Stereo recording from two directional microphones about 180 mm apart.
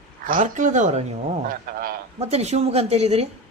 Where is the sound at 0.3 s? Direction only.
45° right (ahead or behind).